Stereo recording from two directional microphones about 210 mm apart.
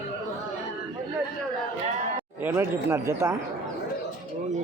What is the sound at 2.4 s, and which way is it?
Speech, 10° right (ahead or behind).